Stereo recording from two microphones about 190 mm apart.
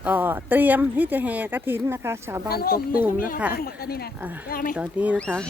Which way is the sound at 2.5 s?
50° left (ahead or behind).